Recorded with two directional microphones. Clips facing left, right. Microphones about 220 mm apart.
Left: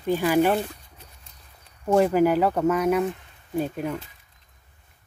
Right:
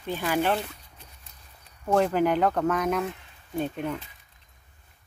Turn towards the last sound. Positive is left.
turn(degrees=5)  # may be behind; listen again after turning